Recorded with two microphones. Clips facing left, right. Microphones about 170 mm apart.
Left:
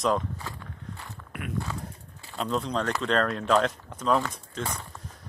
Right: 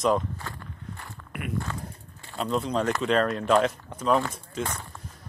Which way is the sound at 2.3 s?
Centre (ahead or behind).